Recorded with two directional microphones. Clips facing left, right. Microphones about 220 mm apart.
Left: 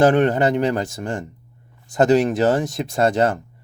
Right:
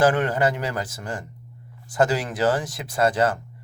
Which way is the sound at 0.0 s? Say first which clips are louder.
Left 5 dB; 20° left (ahead or behind).